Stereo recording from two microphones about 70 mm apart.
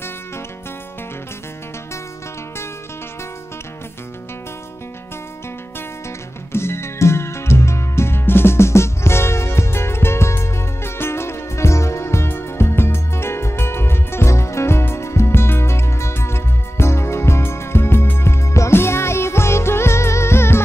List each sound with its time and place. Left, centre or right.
6.5 s music: left